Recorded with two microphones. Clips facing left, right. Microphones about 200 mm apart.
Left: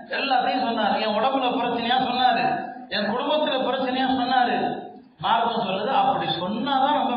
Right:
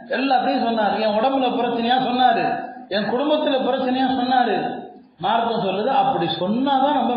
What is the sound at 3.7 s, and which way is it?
Speech, 45° right (ahead or behind).